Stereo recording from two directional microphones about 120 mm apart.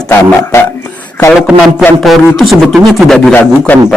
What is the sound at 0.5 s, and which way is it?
Speech, 25° left (ahead or behind).